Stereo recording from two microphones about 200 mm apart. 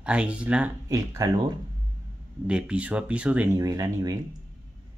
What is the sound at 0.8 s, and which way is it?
Speech, 15° right (ahead or behind).